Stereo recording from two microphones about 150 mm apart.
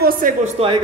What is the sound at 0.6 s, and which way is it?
Speech, 45° right (ahead or behind).